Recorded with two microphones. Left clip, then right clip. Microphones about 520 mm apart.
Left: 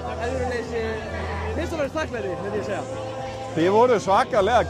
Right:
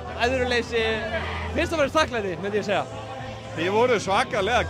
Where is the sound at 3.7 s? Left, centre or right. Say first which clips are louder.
Left 3 dB; centre.